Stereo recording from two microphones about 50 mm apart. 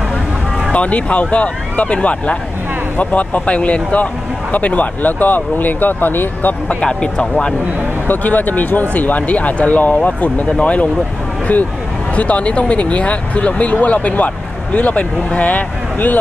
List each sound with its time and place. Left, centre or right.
0.7 s speech: left
6.7 s speech: centre
8.1 s speech: left
11.5 s speech: left
12.2 s speech: left